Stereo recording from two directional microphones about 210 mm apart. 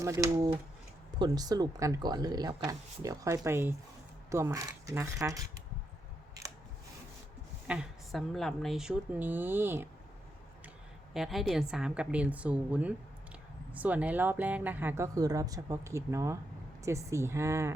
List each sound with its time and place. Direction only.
0.0 s speech: 15° right (ahead or behind)
7.7 s a woman's voice: centre (ahead or behind)
11.1 s a woman's voice: centre (ahead or behind)